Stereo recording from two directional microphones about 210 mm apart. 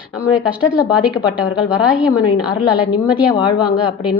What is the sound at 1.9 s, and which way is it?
Speech, 5° right (ahead or behind).